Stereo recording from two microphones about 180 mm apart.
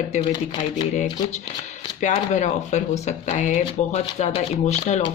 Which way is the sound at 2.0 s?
40° left (ahead or behind).